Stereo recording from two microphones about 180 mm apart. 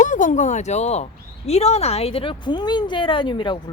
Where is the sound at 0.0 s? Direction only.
45° left (ahead or behind).